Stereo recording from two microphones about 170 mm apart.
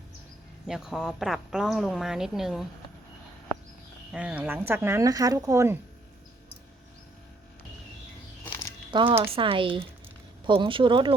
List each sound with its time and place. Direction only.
0.7 s a woman's voice: 5° right (ahead or behind)
4.1 s speech: 5° right (ahead or behind)
8.9 s speech: 25° right (ahead or behind)